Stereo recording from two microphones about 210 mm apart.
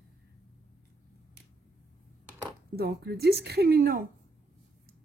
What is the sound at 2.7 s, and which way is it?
A woman's voice, 50° right (ahead or behind).